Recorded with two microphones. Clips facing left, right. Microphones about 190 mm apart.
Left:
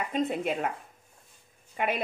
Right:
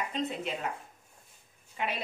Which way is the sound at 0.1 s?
55° left (ahead or behind).